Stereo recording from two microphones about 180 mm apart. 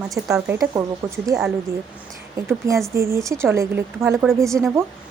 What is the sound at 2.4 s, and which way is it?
Speech, 15° right (ahead or behind).